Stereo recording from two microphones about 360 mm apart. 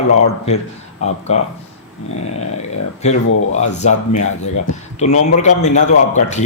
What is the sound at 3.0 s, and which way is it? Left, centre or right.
Speech, centre.